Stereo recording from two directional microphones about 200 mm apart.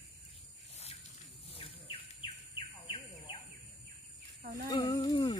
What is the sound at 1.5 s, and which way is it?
Bird, 25° left (ahead or behind).